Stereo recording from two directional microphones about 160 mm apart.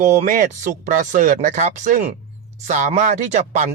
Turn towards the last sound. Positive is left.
turn(degrees=-45)  # may be behind; listen again after turning